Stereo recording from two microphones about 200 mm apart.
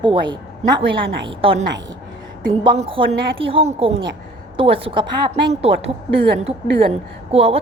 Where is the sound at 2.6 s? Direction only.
25° right (ahead or behind).